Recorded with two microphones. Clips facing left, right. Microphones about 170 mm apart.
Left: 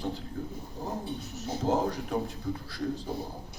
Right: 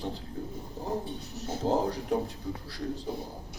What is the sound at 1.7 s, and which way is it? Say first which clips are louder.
Speech: even; 30° right (ahead or behind).